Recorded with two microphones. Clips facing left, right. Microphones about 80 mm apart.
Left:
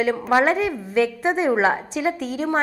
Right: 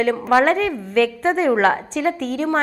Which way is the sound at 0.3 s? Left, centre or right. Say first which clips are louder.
Right 3 dB; centre.